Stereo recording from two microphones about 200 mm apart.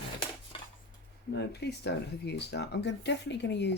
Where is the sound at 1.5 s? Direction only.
55° left (ahead or behind).